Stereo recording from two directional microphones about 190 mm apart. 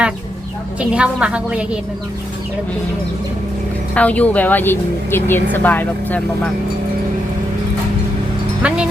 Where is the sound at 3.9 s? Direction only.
5° left (ahead or behind).